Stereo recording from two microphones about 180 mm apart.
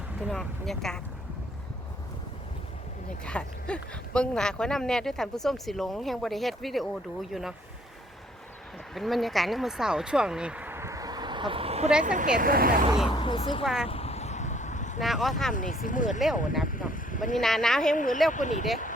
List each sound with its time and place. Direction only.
0.2 s speech: centre (ahead or behind)
3.2 s speech: 5° left (ahead or behind)
9.0 s speech: centre (ahead or behind); by 11.9 s 35° right (ahead or behind)
12.0 s speech: 45° right (ahead or behind)
13.1 s speech: 30° left (ahead or behind)
13.8 s vehicle: 35° left (ahead or behind)
15.0 s speech: centre (ahead or behind)
15.5 s speech: 45° left (ahead or behind)
16.6 s a sound: 50° left (ahead or behind)
17.3 s speech: centre (ahead or behind)
17.9 s speech: 45° left (ahead or behind)